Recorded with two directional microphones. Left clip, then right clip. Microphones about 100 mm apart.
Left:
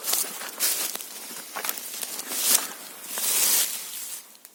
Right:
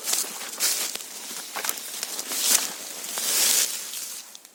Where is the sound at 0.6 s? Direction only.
Centre (ahead or behind).